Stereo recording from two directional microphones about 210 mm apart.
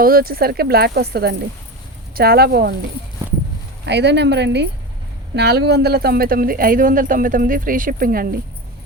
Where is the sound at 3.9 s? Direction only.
55° right (ahead or behind).